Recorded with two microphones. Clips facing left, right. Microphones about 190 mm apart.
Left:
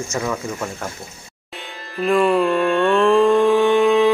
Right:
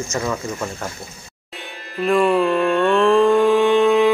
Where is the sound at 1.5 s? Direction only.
Centre (ahead or behind).